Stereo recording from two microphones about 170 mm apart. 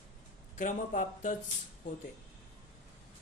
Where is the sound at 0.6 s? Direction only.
50° left (ahead or behind).